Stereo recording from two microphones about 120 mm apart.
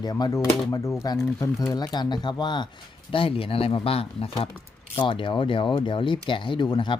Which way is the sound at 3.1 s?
50° left (ahead or behind).